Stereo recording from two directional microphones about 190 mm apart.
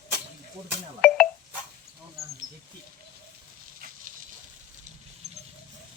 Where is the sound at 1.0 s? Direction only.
5° left (ahead or behind).